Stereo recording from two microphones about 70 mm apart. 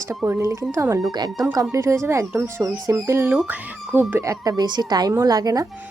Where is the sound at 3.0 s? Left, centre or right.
Right.